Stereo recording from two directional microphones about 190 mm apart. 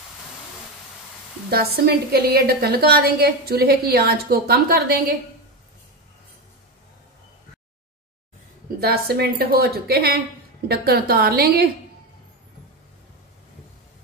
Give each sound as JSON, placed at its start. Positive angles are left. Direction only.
{"t": 1.5, "sound": "a woman's voice", "side_deg": -55}
{"t": 8.6, "sound": "a woman's voice", "side_deg": -55}